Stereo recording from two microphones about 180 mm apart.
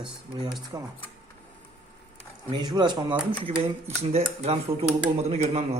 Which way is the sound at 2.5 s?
25° right (ahead or behind).